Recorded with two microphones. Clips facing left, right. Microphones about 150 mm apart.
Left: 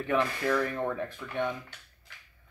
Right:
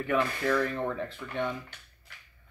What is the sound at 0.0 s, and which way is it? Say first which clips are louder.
Speech: even; 20° left (ahead or behind).